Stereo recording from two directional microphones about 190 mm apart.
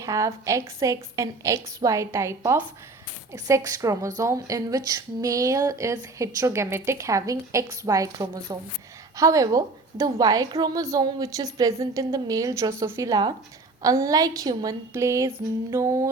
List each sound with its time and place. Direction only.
0.0 s a woman's voice: 15° right (ahead or behind)